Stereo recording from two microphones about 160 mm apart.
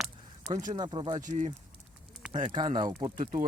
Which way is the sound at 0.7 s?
30° right (ahead or behind).